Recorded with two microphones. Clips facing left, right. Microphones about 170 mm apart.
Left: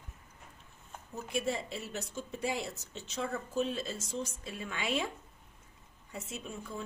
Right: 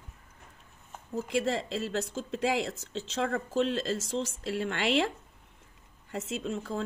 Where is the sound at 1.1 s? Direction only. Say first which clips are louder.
Right 5 dB; 90° right.